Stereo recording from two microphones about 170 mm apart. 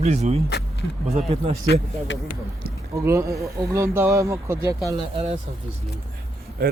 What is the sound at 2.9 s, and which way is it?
Speech, 15° right (ahead or behind).